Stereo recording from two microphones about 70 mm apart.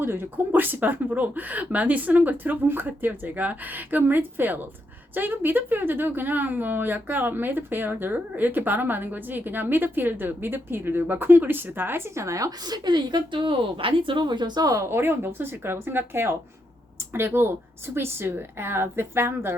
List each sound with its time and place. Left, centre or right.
0.0 s a woman's voice: right
14.3 s speech: right
14.8 s speech: right